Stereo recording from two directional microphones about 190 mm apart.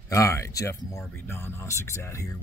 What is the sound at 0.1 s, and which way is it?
Speech, 15° left (ahead or behind).